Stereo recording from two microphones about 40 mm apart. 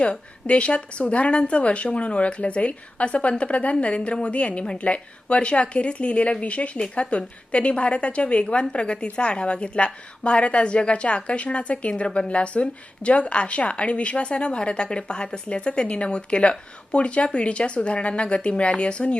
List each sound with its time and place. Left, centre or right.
0.0 s a woman's voice: left